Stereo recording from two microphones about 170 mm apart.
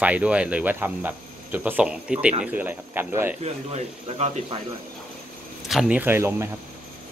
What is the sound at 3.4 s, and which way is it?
Speech, 40° right (ahead or behind).